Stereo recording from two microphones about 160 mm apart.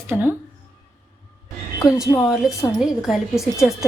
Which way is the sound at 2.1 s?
10° left (ahead or behind).